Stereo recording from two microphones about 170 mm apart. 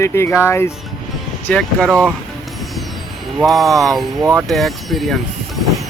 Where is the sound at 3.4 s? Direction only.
Centre (ahead or behind).